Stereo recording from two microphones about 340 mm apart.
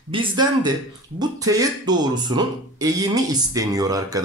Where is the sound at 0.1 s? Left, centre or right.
Centre.